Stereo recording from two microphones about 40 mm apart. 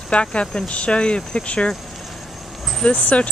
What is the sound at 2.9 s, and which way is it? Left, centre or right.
Speech, left.